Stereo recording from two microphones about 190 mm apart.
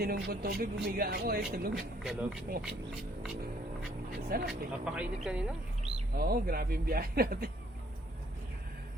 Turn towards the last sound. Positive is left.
turn(degrees=-50)  # may be behind; listen again after turning